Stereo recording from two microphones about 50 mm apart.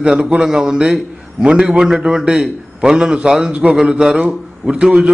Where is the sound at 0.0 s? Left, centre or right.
Centre.